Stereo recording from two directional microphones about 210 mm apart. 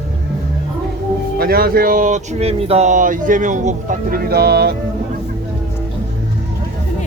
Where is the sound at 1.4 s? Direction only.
45° right (ahead or behind).